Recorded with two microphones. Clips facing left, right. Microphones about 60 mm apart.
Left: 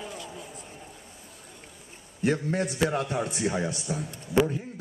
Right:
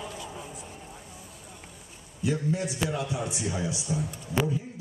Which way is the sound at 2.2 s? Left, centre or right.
Left.